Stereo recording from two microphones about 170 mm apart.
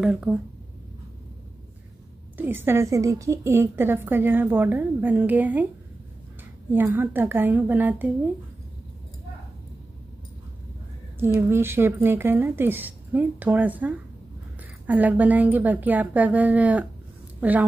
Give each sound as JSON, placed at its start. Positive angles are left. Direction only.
{"t": 0.0, "sound": "speech", "side_deg": -5}
{"t": 2.3, "sound": "a woman's voice", "side_deg": -10}
{"t": 6.7, "sound": "a woman's voice", "side_deg": -10}
{"t": 11.1, "sound": "a woman's voice", "side_deg": -15}